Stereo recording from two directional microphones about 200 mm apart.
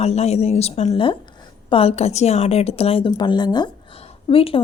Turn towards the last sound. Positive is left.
turn(degrees=25)  # may be behind; listen again after turning